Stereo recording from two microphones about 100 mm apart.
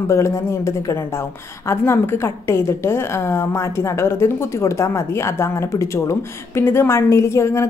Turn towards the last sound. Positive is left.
turn(degrees=30)  # may be behind; listen again after turning